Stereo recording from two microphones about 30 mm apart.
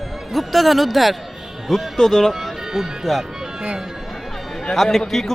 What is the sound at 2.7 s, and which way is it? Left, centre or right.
Speech, centre.